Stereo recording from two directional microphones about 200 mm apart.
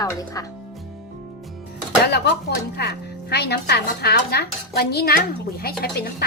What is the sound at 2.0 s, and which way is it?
Speech, 55° left (ahead or behind).